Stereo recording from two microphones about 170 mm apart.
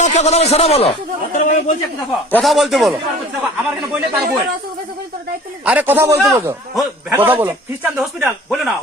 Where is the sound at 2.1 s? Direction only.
Centre (ahead or behind).